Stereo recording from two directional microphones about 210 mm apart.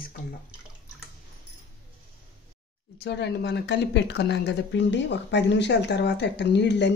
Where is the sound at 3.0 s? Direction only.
55° left (ahead or behind).